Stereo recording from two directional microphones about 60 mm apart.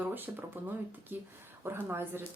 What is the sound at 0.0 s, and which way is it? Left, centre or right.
Speech, right.